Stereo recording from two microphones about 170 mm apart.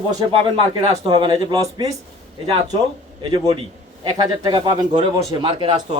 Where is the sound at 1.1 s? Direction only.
30° right (ahead or behind).